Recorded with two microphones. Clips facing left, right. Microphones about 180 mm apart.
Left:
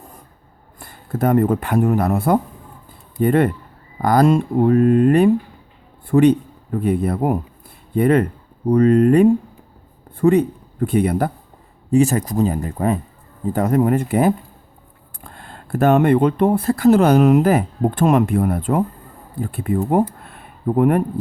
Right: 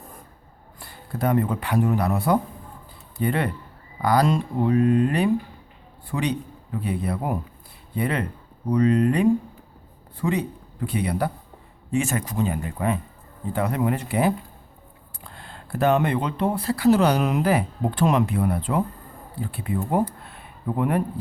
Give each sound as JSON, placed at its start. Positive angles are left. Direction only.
{"t": 0.8, "sound": "a man's voice", "side_deg": 50}
{"t": 11.9, "sound": "speech", "side_deg": 35}